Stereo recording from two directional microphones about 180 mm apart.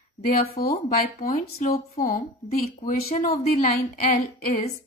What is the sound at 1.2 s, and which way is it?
Speech, 50° left (ahead or behind).